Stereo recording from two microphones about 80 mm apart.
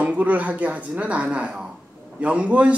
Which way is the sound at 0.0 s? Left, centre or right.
Centre.